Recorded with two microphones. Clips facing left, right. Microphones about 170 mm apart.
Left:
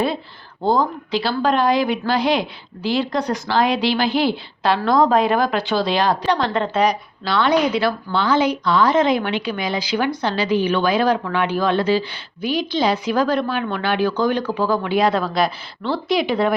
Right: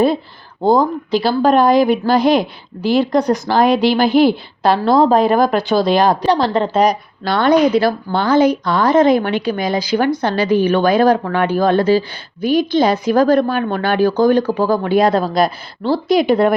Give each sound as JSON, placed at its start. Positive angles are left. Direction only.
{"t": 0.6, "sound": "a woman's voice", "side_deg": -45}